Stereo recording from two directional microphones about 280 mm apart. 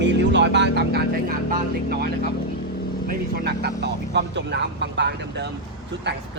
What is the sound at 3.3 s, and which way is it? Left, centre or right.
Speech, right.